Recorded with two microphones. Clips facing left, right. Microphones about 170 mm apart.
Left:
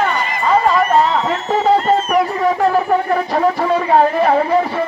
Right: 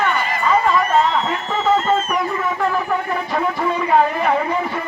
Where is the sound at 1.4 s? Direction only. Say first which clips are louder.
Left 5 dB; 40° left (ahead or behind).